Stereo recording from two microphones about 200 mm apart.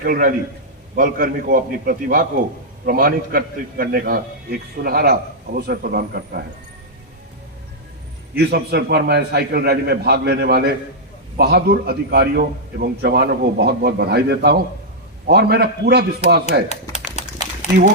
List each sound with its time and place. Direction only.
0.0 s a man's voice: 45° right (ahead or behind)
8.4 s a man's voice: 50° right (ahead or behind)
17.2 s a sound: 35° left (ahead or behind)